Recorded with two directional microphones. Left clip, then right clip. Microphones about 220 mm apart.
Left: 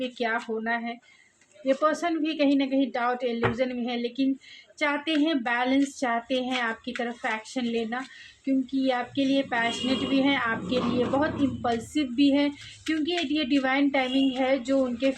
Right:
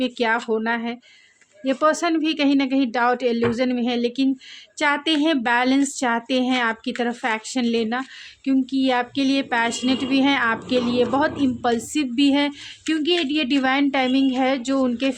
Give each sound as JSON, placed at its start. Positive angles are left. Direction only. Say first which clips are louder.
{"t": 0.0, "sound": "a woman's voice", "louder": "right 7 dB", "side_deg": -50}